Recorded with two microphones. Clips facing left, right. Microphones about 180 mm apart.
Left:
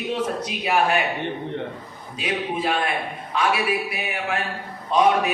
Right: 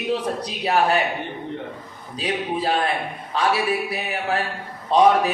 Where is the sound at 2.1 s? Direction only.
35° right (ahead or behind).